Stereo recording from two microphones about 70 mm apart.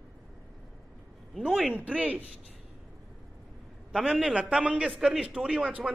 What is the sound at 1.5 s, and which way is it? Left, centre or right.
Speech, centre.